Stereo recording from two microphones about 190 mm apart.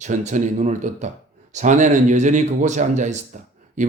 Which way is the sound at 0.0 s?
40° right (ahead or behind).